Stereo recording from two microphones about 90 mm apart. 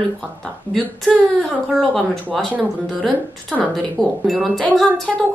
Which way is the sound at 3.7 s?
Centre (ahead or behind).